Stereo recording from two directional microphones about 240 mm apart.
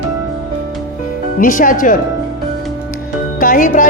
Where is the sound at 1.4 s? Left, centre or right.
Left.